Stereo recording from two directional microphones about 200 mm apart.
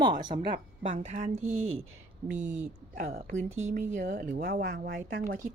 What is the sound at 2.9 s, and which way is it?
Speech, 35° right (ahead or behind).